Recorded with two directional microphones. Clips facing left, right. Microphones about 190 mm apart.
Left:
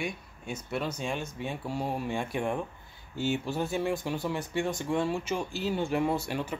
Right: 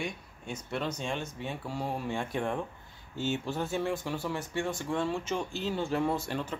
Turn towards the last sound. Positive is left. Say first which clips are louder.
# left 2 dB
turn(degrees=10)  # may be behind; listen again after turning